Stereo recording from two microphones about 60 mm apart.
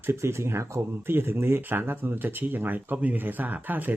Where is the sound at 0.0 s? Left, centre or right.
Right.